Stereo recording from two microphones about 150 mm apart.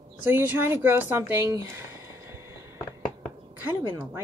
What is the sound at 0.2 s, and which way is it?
A woman's voice, 15° right (ahead or behind).